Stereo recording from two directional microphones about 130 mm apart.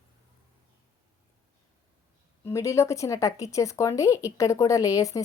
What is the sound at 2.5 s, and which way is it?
Speech, 20° left (ahead or behind).